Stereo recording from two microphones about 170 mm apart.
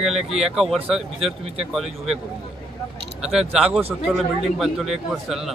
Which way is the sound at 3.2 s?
5° right (ahead or behind).